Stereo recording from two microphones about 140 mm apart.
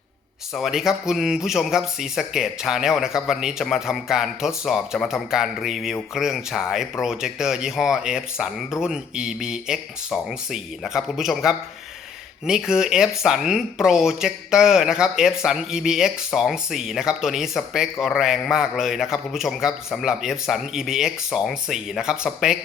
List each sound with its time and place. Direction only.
0.5 s speech: centre (ahead or behind)